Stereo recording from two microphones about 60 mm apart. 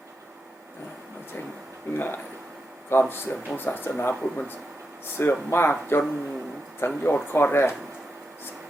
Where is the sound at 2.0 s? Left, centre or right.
Left.